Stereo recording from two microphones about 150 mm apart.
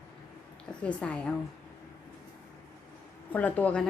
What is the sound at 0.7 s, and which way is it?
Speech, 5° left (ahead or behind).